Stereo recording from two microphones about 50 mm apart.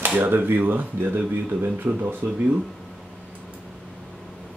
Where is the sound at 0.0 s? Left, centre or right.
Right.